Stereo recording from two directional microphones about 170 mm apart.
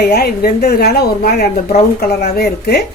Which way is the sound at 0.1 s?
65° left (ahead or behind).